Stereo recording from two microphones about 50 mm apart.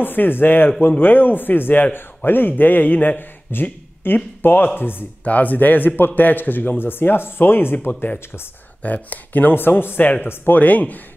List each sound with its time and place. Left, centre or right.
0.0 s speech: left
5.2 s speech: left
8.8 s speech: left
10.6 s speech: left